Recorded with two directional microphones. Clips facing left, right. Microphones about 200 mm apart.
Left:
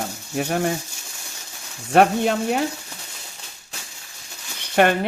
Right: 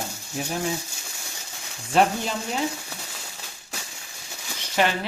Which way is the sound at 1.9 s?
60° left (ahead or behind).